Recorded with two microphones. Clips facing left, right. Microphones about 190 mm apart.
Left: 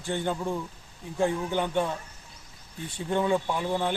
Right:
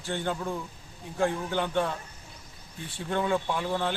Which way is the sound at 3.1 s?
15° left (ahead or behind).